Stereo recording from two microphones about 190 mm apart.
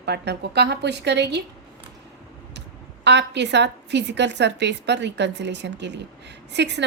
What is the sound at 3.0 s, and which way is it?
A woman's voice, 65° right (ahead or behind).